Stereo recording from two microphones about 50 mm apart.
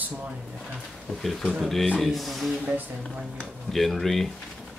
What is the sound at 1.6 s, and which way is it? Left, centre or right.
Speech, centre.